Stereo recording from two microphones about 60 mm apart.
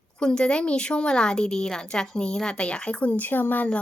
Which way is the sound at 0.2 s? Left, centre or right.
Centre.